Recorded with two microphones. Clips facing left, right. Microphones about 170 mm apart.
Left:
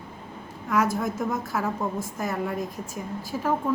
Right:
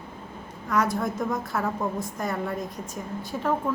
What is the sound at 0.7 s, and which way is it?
A woman's voice, 5° left (ahead or behind).